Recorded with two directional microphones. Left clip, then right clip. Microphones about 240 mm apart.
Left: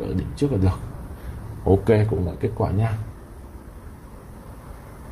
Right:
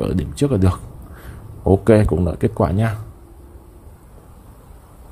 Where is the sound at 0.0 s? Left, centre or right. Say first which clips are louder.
Right 5 dB; right.